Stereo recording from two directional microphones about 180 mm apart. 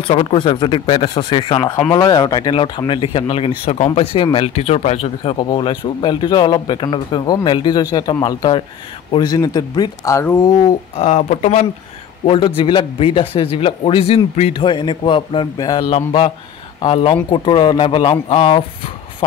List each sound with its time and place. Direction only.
0.0 s speech: 30° left (ahead or behind)
11.0 s speech: 40° left (ahead or behind)
12.3 s speech: 30° left (ahead or behind)